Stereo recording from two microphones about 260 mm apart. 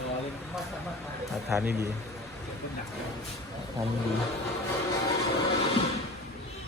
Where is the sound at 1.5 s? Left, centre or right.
Centre.